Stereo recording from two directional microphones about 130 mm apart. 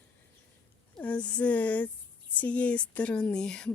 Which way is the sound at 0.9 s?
10° left (ahead or behind).